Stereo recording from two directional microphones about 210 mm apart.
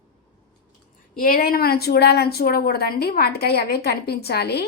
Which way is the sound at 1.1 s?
45° left (ahead or behind).